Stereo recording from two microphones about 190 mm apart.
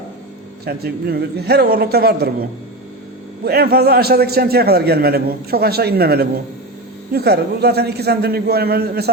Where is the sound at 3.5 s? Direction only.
55° right (ahead or behind).